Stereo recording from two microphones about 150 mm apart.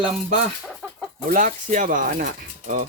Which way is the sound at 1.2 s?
60° right (ahead or behind).